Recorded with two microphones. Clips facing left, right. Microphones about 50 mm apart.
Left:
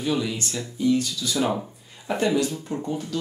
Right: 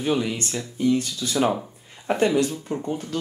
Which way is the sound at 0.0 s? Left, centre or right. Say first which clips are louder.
Right 2 dB; right.